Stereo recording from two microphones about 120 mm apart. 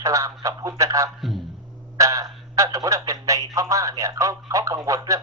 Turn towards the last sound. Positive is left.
turn(degrees=-30)  # may be behind; listen again after turning